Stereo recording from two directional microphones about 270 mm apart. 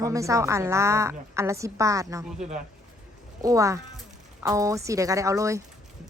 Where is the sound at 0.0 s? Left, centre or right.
Centre.